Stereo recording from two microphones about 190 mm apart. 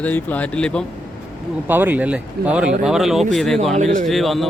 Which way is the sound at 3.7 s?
40° right (ahead or behind).